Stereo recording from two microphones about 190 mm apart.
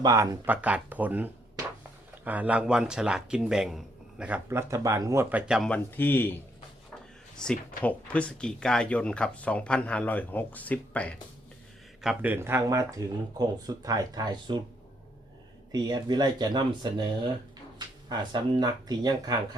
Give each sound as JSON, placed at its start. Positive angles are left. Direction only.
{"t": 0.0, "sound": "speech", "side_deg": -20}
{"t": 7.3, "sound": "speech", "side_deg": 5}
{"t": 12.0, "sound": "speech", "side_deg": -10}
{"t": 15.7, "sound": "speech", "side_deg": -20}